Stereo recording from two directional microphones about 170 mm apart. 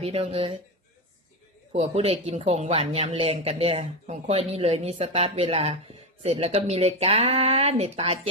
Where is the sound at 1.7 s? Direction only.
35° right (ahead or behind).